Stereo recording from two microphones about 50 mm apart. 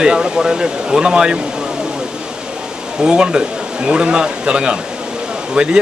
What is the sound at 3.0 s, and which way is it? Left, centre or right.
Speech, centre.